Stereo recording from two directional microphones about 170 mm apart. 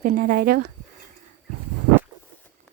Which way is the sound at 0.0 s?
55° right (ahead or behind).